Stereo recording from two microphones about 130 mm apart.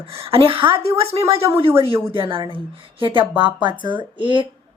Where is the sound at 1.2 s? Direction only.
20° right (ahead or behind).